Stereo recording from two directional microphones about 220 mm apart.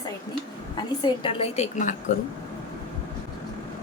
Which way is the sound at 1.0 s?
25° left (ahead or behind).